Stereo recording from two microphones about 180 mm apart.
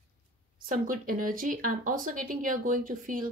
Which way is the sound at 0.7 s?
50° right (ahead or behind).